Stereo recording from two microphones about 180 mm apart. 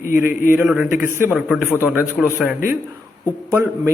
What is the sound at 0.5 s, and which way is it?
A man's voice, 10° right (ahead or behind).